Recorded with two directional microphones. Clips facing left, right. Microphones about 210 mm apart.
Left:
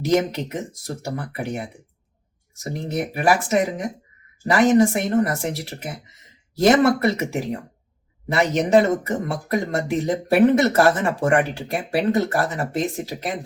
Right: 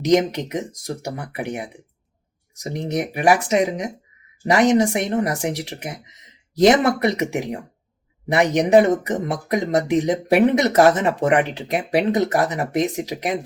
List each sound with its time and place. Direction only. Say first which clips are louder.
0.0 s speech: right 3 dB; 15° right (ahead or behind)